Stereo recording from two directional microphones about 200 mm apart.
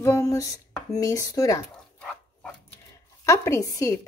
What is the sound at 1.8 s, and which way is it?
Dog, centre (ahead or behind).